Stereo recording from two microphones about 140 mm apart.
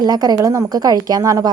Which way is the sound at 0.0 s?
25° right (ahead or behind).